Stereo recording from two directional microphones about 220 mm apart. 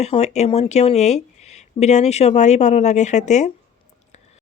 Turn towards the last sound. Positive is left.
turn(degrees=30)  # may be behind; listen again after turning